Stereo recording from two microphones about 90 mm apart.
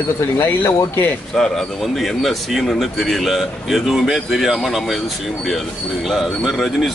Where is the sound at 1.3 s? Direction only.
5° left (ahead or behind).